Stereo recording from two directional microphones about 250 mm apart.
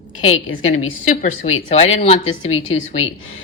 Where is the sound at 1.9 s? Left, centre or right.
Left.